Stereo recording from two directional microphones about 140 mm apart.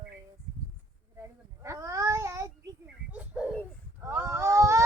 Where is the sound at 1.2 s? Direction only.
20° right (ahead or behind).